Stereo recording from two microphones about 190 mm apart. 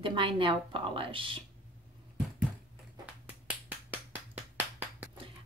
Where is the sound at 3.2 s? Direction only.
10° right (ahead or behind).